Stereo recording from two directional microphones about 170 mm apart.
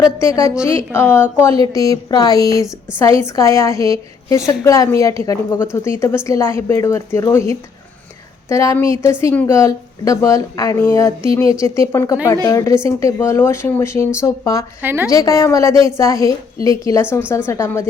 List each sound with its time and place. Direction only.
0.0 s speech: 20° left (ahead or behind)
14.8 s a woman's voice: 10° right (ahead or behind)
15.1 s speech: 20° left (ahead or behind)